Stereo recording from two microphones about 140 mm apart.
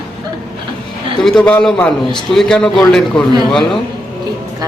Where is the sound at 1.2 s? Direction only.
5° left (ahead or behind).